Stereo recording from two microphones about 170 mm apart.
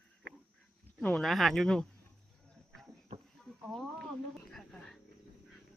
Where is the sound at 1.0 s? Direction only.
5° left (ahead or behind).